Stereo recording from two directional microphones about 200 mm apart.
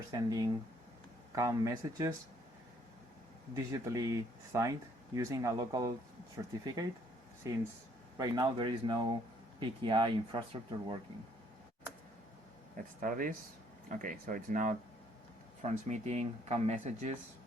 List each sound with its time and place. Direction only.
0.1 s speech: 20° right (ahead or behind)
3.5 s speech: 15° right (ahead or behind)
7.4 s speech: 15° right (ahead or behind)
12.7 s speech: 45° right (ahead or behind)